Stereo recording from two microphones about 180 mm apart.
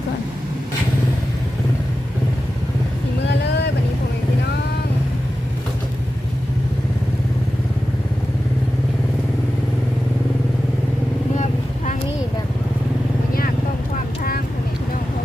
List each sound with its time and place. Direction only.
3.2 s vehicle: 70° left (ahead or behind)